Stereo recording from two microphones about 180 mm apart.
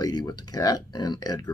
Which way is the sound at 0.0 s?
20° left (ahead or behind).